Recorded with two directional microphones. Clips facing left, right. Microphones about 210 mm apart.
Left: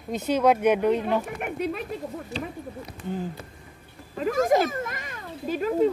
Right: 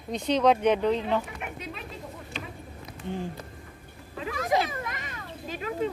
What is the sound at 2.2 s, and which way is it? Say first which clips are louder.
Speech: left 7 dB; 35° left (ahead or behind).